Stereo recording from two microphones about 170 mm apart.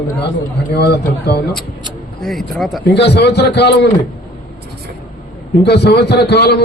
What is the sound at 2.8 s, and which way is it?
A man's voice, 80° left.